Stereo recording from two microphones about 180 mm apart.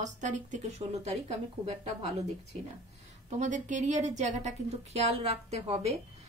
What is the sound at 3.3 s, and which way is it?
A woman's voice, 45° right (ahead or behind).